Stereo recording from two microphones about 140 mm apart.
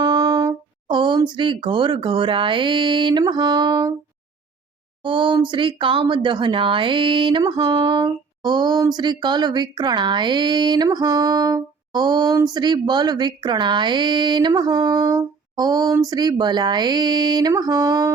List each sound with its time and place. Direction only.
0.0 s speech: 30° right (ahead or behind)
5.0 s speech: 35° right (ahead or behind)